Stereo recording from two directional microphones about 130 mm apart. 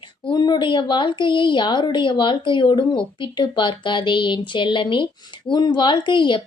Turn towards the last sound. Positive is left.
turn(degrees=40)  # may be behind; listen again after turning